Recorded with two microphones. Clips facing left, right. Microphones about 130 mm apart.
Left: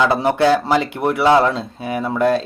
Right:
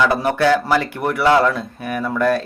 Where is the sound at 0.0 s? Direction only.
20° left (ahead or behind).